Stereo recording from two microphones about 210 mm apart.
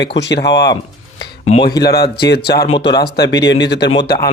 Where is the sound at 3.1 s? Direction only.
55° left (ahead or behind).